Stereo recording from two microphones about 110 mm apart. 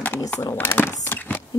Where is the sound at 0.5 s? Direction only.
20° left (ahead or behind).